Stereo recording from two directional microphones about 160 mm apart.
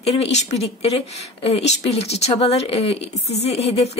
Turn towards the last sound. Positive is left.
turn(degrees=40)  # may be behind; listen again after turning